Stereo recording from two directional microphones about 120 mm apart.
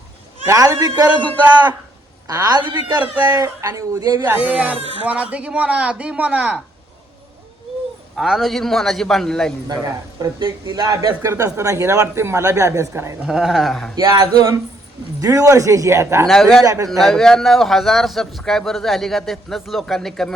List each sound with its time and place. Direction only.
0.4 s speech: 25° right (ahead or behind)
2.2 s speech: 30° right (ahead or behind)
4.3 s speech: 15° right (ahead or behind)
4.8 s speech: 55° right (ahead or behind)
5.0 s speech: 10° right (ahead or behind)
8.1 s a man's voice: centre (ahead or behind)
9.6 s speech: 35° right (ahead or behind)
13.2 s a man's voice: 5° right (ahead or behind)
13.9 s speech: 30° right (ahead or behind)
16.2 s a man's voice: centre (ahead or behind)
16.6 s speech: 30° right (ahead or behind)
17.0 s a man's voice: centre (ahead or behind)